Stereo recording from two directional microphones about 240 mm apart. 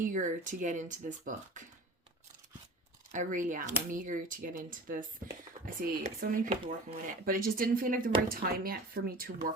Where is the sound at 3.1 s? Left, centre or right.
Right.